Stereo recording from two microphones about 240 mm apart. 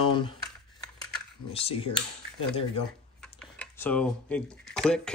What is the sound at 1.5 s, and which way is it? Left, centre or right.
Speech, left.